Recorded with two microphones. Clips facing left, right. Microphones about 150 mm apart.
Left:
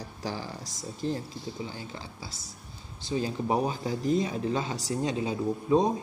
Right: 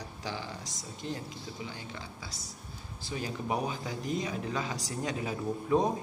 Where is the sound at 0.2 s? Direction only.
40° left (ahead or behind).